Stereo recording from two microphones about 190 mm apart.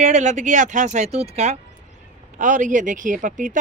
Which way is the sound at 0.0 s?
40° right (ahead or behind).